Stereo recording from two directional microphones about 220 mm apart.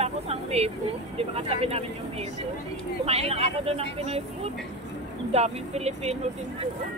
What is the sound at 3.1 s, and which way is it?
Speech, 30° right (ahead or behind).